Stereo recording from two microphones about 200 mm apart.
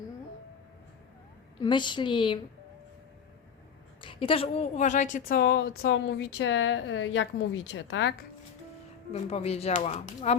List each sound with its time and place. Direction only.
1.5 s a woman's voice: 25° left (ahead or behind)
4.0 s a woman's voice: 25° left (ahead or behind); by 8.1 s 65° left (ahead or behind)
9.1 s speech: 30° left (ahead or behind)